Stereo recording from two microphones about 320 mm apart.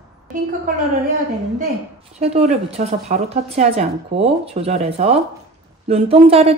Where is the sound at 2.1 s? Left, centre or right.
Right.